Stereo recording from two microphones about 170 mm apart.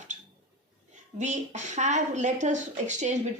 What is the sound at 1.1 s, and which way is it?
Speech, 45° right (ahead or behind).